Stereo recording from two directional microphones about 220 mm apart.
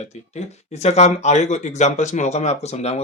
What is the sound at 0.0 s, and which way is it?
Speech, 30° left (ahead or behind).